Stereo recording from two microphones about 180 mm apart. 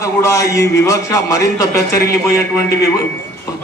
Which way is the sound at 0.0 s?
15° left (ahead or behind).